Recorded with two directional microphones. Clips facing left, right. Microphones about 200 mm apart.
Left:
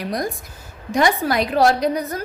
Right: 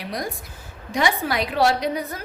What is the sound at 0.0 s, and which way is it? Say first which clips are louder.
A woman's voice: left 5 dB; 45° left (ahead or behind).